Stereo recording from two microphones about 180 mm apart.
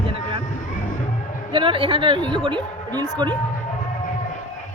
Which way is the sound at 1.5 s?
30° right (ahead or behind).